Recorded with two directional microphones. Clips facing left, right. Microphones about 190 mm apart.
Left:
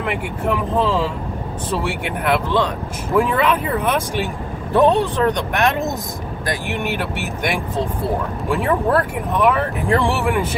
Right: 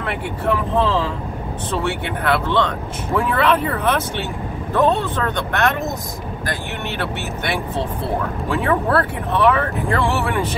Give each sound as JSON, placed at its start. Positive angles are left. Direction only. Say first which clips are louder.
{"t": 0.0, "sound": "speech", "louder": "left 1 dB", "side_deg": 10}
{"t": 2.3, "sound": "speech", "louder": "even", "side_deg": 10}